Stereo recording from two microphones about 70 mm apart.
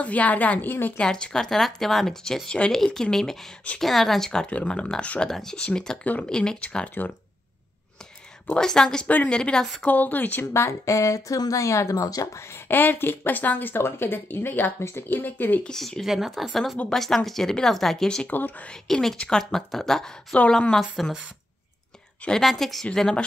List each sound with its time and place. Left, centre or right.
0.0 s a woman's voice: left
0.9 s speech: centre
8.5 s speech: centre
9.0 s a woman's voice: left
9.4 s speech: centre
9.8 s a woman's voice: left
10.4 s speech: left
12.4 s speech: left
15.6 s speech: centre
18.3 s a woman's voice: left
18.7 s speech: centre
20.3 s speech: centre
22.4 s speech: centre